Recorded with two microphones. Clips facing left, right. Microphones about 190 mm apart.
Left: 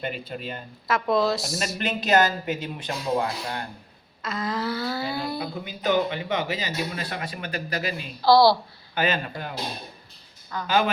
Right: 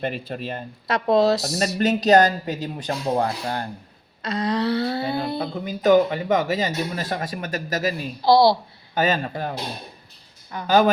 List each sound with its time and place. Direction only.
0.1 s speech: 40° right (ahead or behind)
4.9 s a sound: 25° right (ahead or behind)
5.6 s speech: 45° right (ahead or behind)
8.2 s a sound: 20° right (ahead or behind)
9.0 s speech: 40° right (ahead or behind)
10.7 s speech: 45° right (ahead or behind)